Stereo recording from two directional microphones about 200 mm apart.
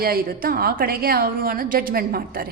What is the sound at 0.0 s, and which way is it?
A woman's voice, 50° right (ahead or behind).